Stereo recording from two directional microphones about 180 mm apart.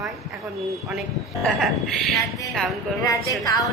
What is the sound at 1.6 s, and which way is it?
Speech, centre (ahead or behind).